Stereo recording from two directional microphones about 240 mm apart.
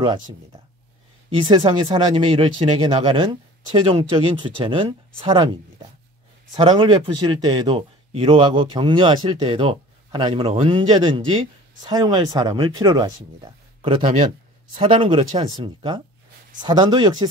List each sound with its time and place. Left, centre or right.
1.3 s speech: right